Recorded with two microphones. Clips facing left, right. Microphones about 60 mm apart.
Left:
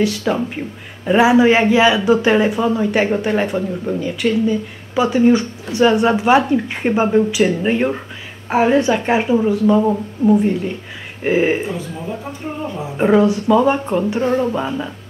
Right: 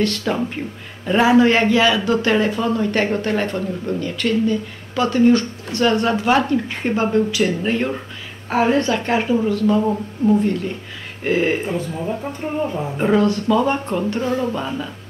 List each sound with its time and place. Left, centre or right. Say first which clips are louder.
0.0 s speech: left 2 dB; centre
12.7 s speech: left 5 dB; centre
14.2 s a sound: left 4 dB; left
14.5 s speech: left 3 dB; centre